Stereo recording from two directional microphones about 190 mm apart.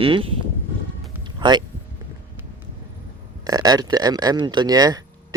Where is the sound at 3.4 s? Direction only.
20° right (ahead or behind).